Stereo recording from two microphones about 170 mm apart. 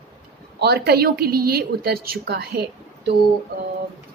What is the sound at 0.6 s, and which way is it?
Speech, 70° right (ahead or behind).